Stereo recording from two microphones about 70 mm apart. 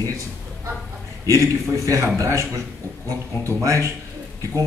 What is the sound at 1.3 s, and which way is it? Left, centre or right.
Speech, right.